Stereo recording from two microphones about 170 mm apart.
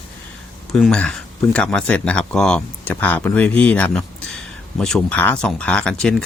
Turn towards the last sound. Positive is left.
turn(degrees=5)  # may be behind; listen again after turning